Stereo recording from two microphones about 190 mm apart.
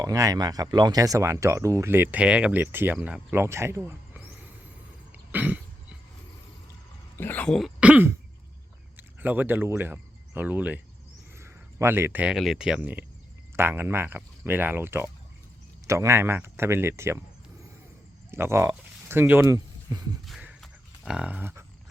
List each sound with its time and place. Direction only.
0.0 s speech: 15° right (ahead or behind)
5.3 s cough: 10° right (ahead or behind)
7.2 s speech: 10° left (ahead or behind); by 17.2 s 15° right (ahead or behind)
18.3 s speech: 15° right (ahead or behind)
20.2 s a sound: 5° right (ahead or behind)